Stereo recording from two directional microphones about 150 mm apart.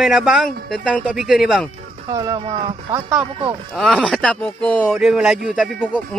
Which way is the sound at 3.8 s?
5° left (ahead or behind).